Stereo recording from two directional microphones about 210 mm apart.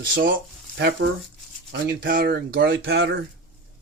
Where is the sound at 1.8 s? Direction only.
45° right (ahead or behind).